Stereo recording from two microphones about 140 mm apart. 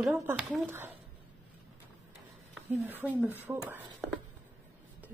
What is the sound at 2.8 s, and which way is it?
A woman's voice, 10° right (ahead or behind).